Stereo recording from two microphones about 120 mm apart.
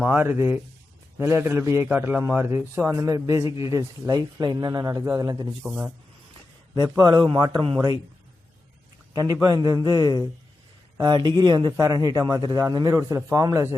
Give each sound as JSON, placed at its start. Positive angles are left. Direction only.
{"t": 0.1, "sound": "a man's voice", "side_deg": -20}
{"t": 5.6, "sound": "speech", "side_deg": -15}
{"t": 7.0, "sound": "a man's voice", "side_deg": -35}
{"t": 9.1, "sound": "a man's voice", "side_deg": -30}